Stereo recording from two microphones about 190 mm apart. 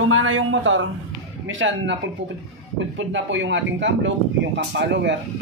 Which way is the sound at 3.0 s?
80° right.